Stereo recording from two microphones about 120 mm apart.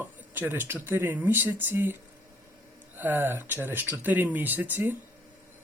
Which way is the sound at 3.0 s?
15° right (ahead or behind).